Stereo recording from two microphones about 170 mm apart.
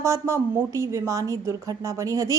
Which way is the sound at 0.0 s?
15° right (ahead or behind).